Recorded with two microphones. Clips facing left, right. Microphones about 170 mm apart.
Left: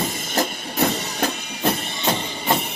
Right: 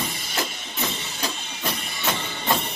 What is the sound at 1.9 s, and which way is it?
Music, 25° left (ahead or behind).